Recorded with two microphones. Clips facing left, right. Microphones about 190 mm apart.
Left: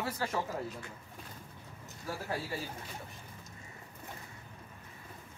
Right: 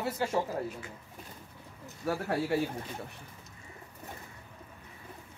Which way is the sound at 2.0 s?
65° right (ahead or behind).